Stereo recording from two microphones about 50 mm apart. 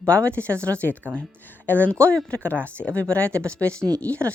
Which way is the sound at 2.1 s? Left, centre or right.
Left.